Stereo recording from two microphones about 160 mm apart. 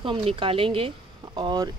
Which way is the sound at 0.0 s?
35° right (ahead or behind).